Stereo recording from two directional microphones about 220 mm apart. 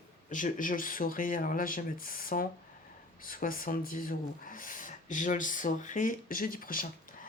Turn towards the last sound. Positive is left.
turn(degrees=40)  # may be behind; listen again after turning